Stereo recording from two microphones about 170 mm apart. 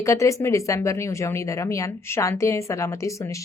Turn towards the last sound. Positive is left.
turn(degrees=20)  # may be behind; listen again after turning